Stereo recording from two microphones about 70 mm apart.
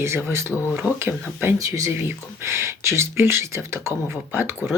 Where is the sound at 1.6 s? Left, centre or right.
Right.